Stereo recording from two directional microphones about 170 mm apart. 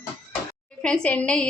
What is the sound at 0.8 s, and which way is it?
Speech, 5° left (ahead or behind).